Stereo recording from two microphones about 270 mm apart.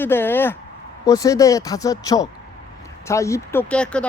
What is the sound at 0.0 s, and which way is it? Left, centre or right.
Speech, centre.